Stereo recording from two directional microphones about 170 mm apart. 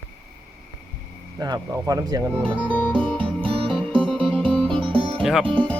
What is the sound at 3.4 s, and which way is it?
Music, 30° right (ahead or behind).